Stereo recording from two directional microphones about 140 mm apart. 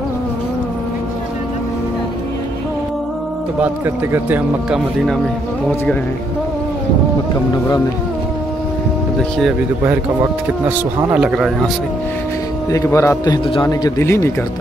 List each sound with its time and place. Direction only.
3.5 s speech: 15° right (ahead or behind)
11.1 s speech: 5° right (ahead or behind)
12.7 s a man's voice: 20° left (ahead or behind)